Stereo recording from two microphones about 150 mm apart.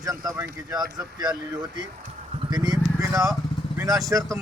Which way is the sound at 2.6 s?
25° right (ahead or behind).